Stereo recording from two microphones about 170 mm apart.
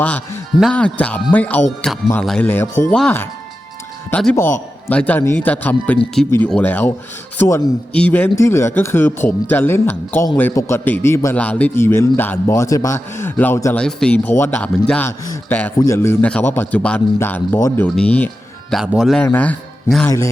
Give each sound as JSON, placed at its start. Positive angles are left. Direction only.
{"t": 0.0, "sound": "a man's voice", "side_deg": 10}
{"t": 4.1, "sound": "a man's voice", "side_deg": 5}
{"t": 15.2, "sound": "a man's voice", "side_deg": 20}
{"t": 19.2, "sound": "a man's voice", "side_deg": 10}
{"t": 20.1, "sound": "a man's voice", "side_deg": 20}